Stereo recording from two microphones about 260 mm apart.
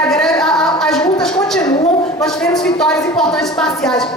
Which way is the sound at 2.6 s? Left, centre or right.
Centre.